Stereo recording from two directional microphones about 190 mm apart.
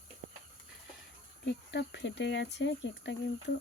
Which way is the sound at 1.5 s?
65° left (ahead or behind).